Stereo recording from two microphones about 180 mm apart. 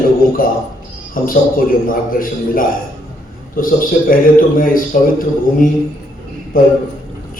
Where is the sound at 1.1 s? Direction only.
50° left (ahead or behind).